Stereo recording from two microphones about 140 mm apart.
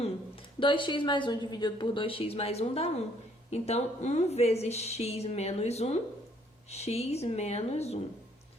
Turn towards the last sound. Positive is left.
turn(degrees=50)  # may be behind; listen again after turning